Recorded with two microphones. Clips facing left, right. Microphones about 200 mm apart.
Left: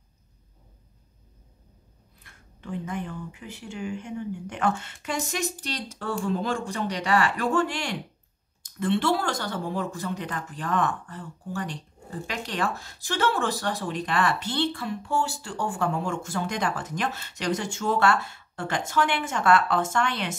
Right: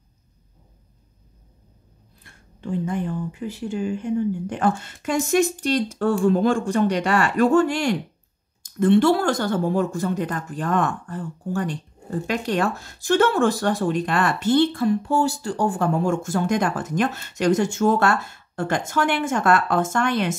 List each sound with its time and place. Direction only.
2.2 s speech: 30° right (ahead or behind)